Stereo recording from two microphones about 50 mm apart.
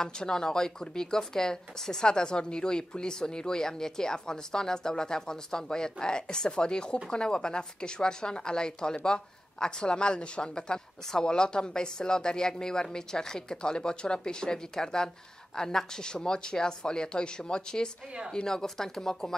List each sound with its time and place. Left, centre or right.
0.0 s speech: centre